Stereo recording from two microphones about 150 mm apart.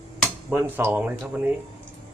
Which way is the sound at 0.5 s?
15° right (ahead or behind).